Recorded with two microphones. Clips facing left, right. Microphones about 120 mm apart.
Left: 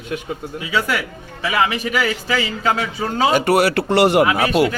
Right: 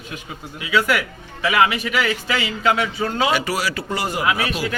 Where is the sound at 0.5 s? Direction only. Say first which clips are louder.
Right 2 dB; 30° left (ahead or behind).